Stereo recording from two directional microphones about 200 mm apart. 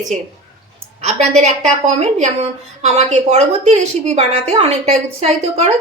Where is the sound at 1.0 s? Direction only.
35° right (ahead or behind).